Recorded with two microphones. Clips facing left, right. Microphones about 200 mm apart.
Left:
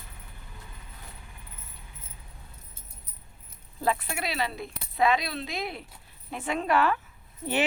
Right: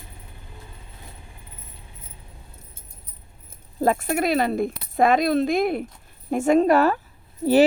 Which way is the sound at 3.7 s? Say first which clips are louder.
Right 8 dB; 45° right (ahead or behind).